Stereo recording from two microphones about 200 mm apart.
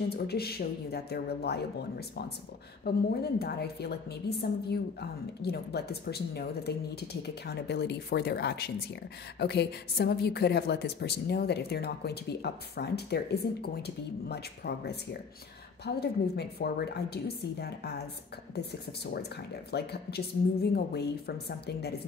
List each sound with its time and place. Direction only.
0.3 s a woman's voice: 50° left (ahead or behind)